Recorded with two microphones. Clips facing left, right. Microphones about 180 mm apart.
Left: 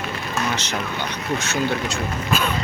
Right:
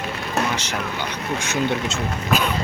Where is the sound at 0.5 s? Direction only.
10° right (ahead or behind).